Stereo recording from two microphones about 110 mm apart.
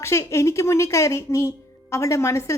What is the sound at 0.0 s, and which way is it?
Speech, 25° left (ahead or behind).